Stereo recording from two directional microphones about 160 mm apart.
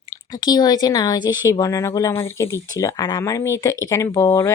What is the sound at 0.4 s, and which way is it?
Speech, 25° left (ahead or behind).